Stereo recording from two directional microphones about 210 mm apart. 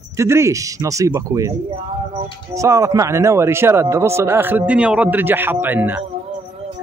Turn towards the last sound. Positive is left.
turn(degrees=-10)  # may be behind; listen again after turning